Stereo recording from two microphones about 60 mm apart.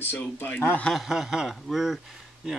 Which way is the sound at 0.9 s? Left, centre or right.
Centre.